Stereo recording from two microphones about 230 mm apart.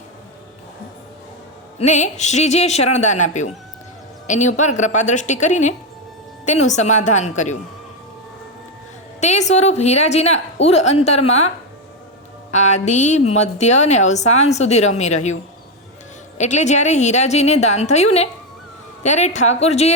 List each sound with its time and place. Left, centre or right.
1.8 s a woman's voice: left
9.5 s a woman's voice: left
12.5 s a woman's voice: left
16.4 s a woman's voice: left